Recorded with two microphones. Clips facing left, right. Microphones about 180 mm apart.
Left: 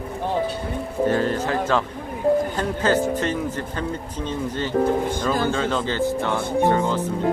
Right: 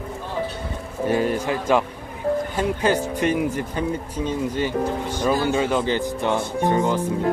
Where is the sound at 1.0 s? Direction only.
10° right (ahead or behind).